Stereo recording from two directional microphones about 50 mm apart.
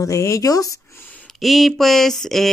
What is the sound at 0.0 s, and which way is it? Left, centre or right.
Speech, left.